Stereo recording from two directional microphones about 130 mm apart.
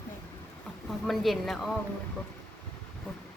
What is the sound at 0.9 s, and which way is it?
Speech, centre (ahead or behind).